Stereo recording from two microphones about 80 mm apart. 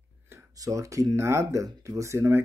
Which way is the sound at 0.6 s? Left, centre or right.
Right.